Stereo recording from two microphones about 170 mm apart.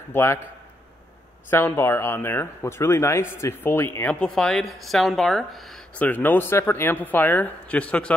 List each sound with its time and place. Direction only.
0.1 s speech: 15° left (ahead or behind)
1.5 s speech: 15° left (ahead or behind)